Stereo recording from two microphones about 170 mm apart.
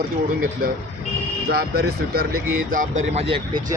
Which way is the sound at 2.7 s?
50° right (ahead or behind).